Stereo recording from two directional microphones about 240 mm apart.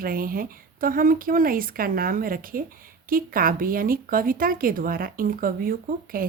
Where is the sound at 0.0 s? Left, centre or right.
Right.